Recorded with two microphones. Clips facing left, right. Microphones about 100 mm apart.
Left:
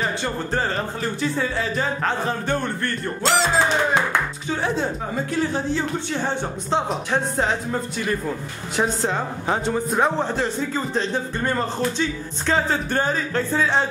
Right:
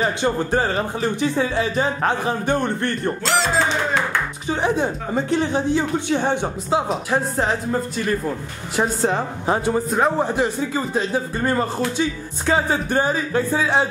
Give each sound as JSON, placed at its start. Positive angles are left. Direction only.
{"t": 0.2, "sound": "speech", "side_deg": -15}
{"t": 3.3, "sound": "speech", "side_deg": 0}
{"t": 4.5, "sound": "speech", "side_deg": -15}
{"t": 6.9, "sound": "speech", "side_deg": 0}
{"t": 10.2, "sound": "speech", "side_deg": -15}